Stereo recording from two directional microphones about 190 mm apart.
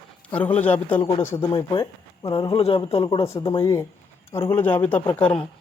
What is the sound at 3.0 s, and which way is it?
Speech, 15° left (ahead or behind).